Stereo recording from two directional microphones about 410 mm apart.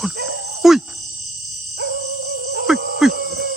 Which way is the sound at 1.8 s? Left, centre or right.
Right.